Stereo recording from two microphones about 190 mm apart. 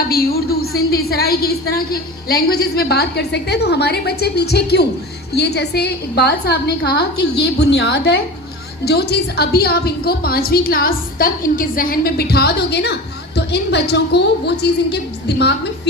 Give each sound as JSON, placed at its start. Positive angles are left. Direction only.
{"t": 0.1, "sound": "a woman's voice", "side_deg": 50}